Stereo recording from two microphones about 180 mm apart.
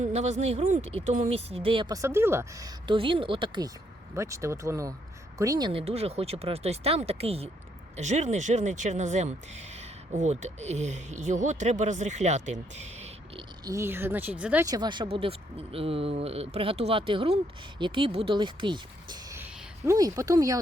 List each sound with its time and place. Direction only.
0.0 s speech: 35° right (ahead or behind)
4.1 s speech: 15° right (ahead or behind); by 12.4 s 40° right (ahead or behind)
13.3 s speech: 20° right (ahead or behind)
14.6 s speech: 20° right (ahead or behind)